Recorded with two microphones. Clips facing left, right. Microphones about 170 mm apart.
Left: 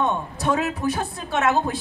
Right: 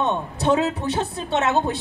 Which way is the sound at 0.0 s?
25° right (ahead or behind).